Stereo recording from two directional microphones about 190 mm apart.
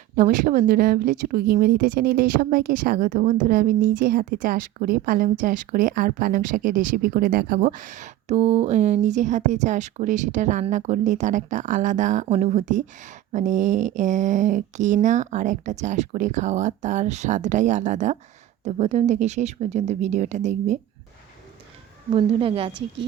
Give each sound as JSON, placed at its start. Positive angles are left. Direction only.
{"t": 0.2, "sound": "a woman's voice", "side_deg": -45}
{"t": 22.1, "sound": "a woman's voice", "side_deg": -30}